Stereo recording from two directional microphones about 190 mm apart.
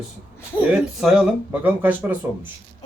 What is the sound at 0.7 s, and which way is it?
Speech, centre (ahead or behind).